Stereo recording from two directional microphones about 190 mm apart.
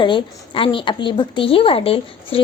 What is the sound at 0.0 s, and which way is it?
A woman's voice, 25° left (ahead or behind).